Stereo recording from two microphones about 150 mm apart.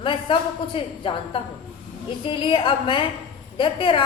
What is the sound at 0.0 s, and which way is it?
A woman's voice, 35° left (ahead or behind).